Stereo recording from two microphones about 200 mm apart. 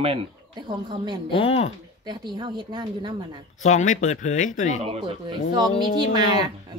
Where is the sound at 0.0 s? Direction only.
25° right (ahead or behind).